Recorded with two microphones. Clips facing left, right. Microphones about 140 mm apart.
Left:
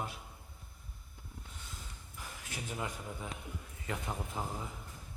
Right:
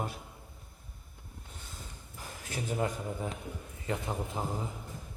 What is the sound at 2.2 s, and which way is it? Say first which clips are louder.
Speech: right 6 dB; 40° right (ahead or behind).